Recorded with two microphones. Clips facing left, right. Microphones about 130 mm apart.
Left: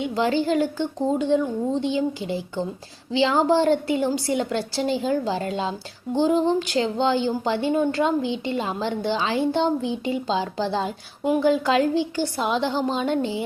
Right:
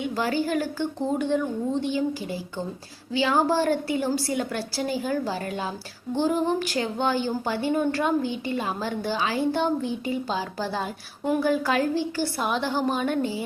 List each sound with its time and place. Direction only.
0.0 s speech: 25° left (ahead or behind)